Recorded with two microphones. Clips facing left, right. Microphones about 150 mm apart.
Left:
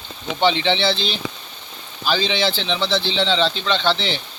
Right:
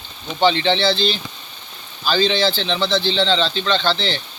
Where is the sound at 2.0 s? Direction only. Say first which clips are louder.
Right 3 dB; 10° left (ahead or behind).